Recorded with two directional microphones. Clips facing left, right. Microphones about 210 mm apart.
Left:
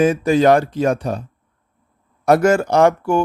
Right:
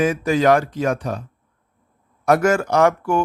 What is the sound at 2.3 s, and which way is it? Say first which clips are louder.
Speech: left 3 dB; 30° left (ahead or behind).